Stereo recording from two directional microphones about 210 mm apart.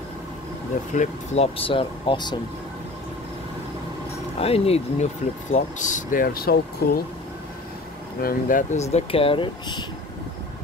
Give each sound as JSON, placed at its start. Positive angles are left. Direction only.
{"t": 0.9, "sound": "speech", "side_deg": 30}
{"t": 4.4, "sound": "speech", "side_deg": 30}
{"t": 8.2, "sound": "speech", "side_deg": 40}